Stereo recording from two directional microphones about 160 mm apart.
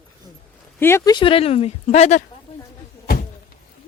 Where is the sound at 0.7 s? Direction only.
15° left (ahead or behind); by 2.2 s 40° left (ahead or behind).